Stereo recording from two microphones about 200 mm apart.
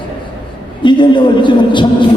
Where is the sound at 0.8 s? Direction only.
25° left (ahead or behind).